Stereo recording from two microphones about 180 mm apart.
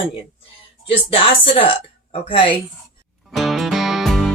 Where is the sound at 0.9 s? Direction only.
30° left (ahead or behind).